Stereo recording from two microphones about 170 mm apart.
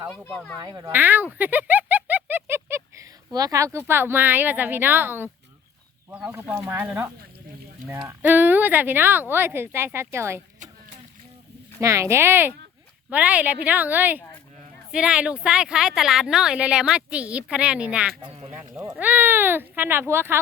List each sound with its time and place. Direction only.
0.1 s speech: centre (ahead or behind)
0.6 s a woman's voice: 20° right (ahead or behind)
11.8 s a woman's voice: 15° right (ahead or behind)
18.3 s speech: 35° right (ahead or behind)
18.6 s a woman's voice: 15° right (ahead or behind)